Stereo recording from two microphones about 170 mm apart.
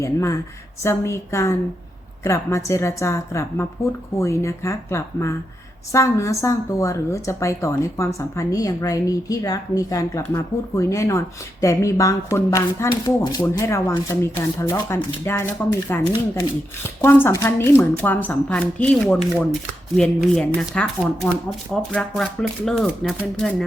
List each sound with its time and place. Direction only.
0.0 s a woman's voice: 15° left (ahead or behind)